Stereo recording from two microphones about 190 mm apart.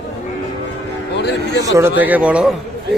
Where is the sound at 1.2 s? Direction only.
65° left (ahead or behind).